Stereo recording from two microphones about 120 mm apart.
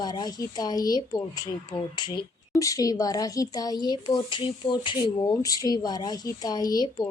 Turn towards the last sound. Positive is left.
turn(degrees=35)  # may be behind; listen again after turning